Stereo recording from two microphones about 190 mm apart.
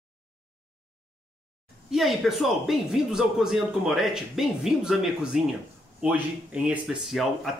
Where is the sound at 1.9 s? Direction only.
Centre (ahead or behind).